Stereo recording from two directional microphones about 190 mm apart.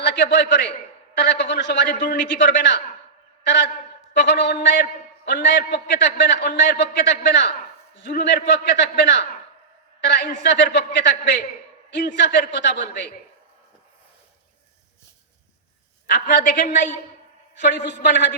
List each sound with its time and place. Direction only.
0.0 s a man's voice: 65° left (ahead or behind)
3.4 s a man's voice: 65° left (ahead or behind)
16.0 s a man's voice: 55° left (ahead or behind)
17.6 s a man's voice: 65° left (ahead or behind)